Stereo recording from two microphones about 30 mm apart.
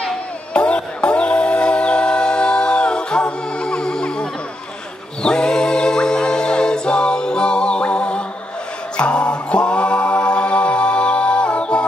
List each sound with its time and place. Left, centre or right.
0.5 s music: left
3.6 s music: left
5.2 s a capella: left
8.9 s music: left